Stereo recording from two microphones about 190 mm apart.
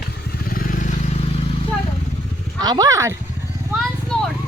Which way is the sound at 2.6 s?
20° right (ahead or behind).